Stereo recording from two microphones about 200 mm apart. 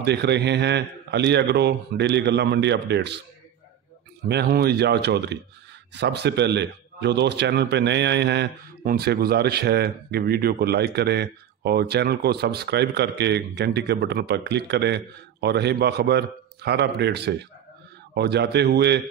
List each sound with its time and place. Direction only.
0.0 s speech: 55° right (ahead or behind)
4.2 s speech: 55° right (ahead or behind)